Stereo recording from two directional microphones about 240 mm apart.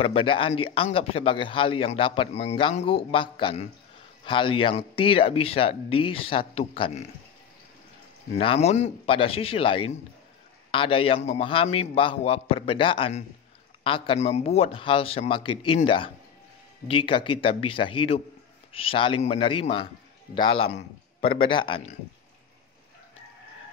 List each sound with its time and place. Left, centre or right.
0.0 s speech: left
8.4 s speech: left